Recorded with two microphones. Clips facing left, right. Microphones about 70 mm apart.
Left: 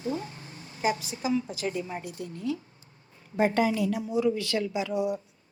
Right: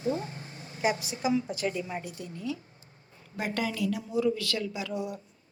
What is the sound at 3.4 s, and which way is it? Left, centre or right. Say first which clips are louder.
A woman's voice: left 7 dB; left.